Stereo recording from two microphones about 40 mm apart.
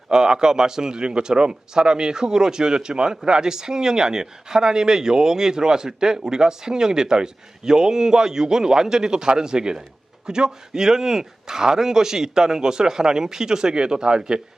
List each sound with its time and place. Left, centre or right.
0.1 s speech: centre